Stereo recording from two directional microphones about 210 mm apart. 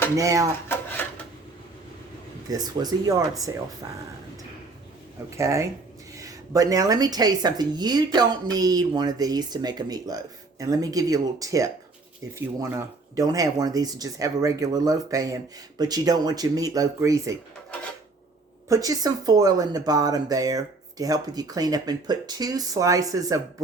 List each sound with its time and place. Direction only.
0.2 s a woman's voice: 15° right (ahead or behind)
2.5 s a woman's voice: 20° right (ahead or behind)
5.4 s a woman's voice: 15° right (ahead or behind)
18.7 s a woman's voice: 15° right (ahead or behind)